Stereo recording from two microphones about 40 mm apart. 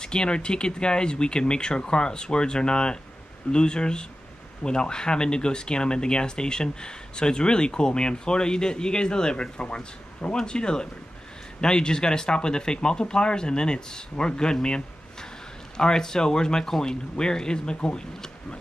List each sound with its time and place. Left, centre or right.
0.0 s speech: left
15.8 s speech: centre